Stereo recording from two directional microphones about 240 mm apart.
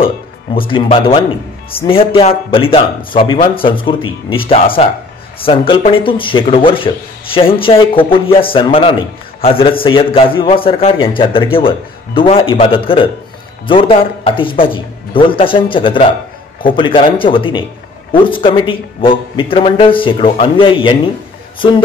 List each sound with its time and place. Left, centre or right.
0.7 s a man's voice: left